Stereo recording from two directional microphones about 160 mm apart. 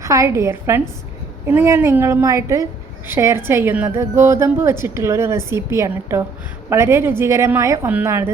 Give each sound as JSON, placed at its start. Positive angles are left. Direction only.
{"t": 0.0, "sound": "a woman's voice", "side_deg": -20}